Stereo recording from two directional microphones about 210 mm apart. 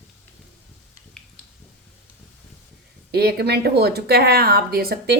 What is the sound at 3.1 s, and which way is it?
Speech, 50° right (ahead or behind).